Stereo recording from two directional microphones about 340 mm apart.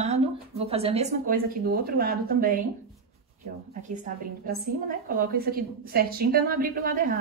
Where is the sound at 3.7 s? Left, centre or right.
Right.